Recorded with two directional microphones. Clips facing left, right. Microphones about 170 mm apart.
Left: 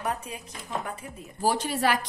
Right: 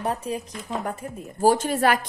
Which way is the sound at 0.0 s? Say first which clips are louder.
Right 5 dB; 35° right (ahead or behind).